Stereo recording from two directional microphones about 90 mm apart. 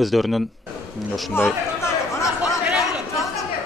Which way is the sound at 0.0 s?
Centre (ahead or behind).